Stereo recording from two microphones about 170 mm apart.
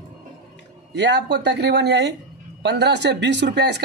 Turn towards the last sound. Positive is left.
turn(degrees=-85)